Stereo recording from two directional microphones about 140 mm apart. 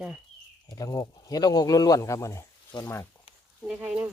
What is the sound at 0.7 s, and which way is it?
Speech, 25° left (ahead or behind).